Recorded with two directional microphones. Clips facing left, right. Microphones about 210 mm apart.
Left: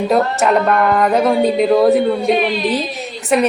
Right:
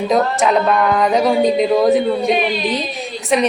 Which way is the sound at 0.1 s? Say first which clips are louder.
Even; 5° left (ahead or behind).